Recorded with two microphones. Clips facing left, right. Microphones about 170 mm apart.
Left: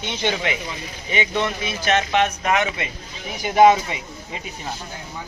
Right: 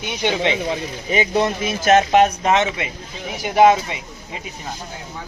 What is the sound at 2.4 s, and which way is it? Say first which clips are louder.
Speech: right 3 dB; 25° right (ahead or behind).